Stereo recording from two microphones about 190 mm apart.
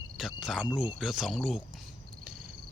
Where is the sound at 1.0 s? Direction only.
5° right (ahead or behind).